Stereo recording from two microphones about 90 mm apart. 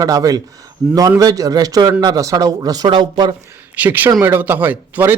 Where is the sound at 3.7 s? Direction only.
20° right (ahead or behind).